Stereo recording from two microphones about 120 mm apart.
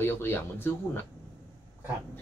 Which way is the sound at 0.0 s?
20° left (ahead or behind).